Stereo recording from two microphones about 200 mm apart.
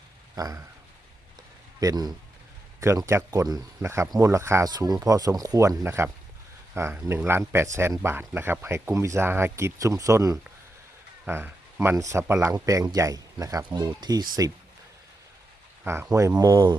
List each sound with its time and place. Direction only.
0.3 s speech: 20° right (ahead or behind)
1.8 s speech: 20° right (ahead or behind)
15.8 s speech: 10° right (ahead or behind)